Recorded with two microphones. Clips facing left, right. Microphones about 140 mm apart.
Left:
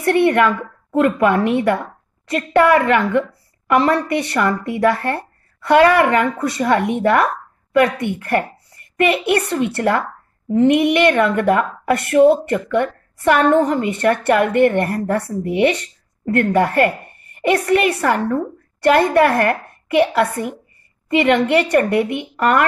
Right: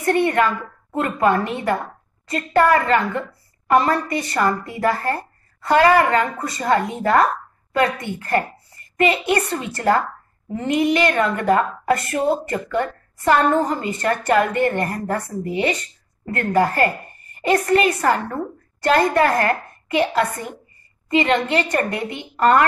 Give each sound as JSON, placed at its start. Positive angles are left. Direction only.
{"t": 0.0, "sound": "a woman's voice", "side_deg": 70}